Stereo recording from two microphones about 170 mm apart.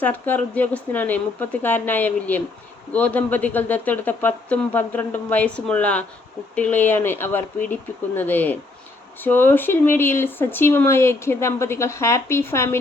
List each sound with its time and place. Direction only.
0.0 s speech: 10° left (ahead or behind)